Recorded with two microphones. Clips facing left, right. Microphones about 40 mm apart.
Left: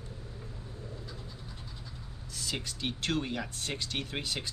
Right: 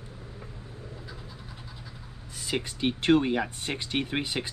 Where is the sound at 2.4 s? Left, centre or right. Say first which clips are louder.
Right 6 dB; right.